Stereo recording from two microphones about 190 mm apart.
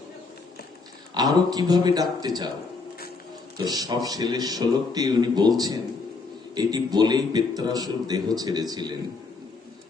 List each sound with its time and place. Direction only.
1.1 s a man's voice: 20° right (ahead or behind)
3.6 s a man's voice: 20° right (ahead or behind)